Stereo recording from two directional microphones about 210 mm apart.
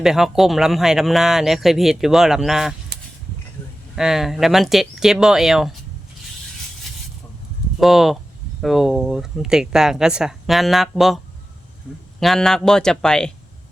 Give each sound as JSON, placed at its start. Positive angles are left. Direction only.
{"t": 0.0, "sound": "speech", "side_deg": 0}
{"t": 3.9, "sound": "speech", "side_deg": 0}
{"t": 7.8, "sound": "speech", "side_deg": 0}
{"t": 12.2, "sound": "speech", "side_deg": 0}